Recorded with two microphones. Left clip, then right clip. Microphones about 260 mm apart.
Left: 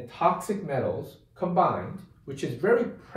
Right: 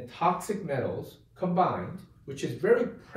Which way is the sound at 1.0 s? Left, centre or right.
Centre.